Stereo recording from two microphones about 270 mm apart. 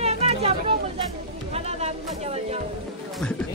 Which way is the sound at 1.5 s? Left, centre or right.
Right.